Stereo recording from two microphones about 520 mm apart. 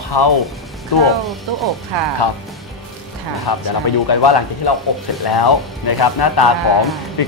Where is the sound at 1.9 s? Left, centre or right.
Right.